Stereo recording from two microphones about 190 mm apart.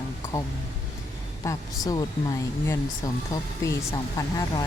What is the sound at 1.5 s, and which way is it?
Speech, 20° left (ahead or behind).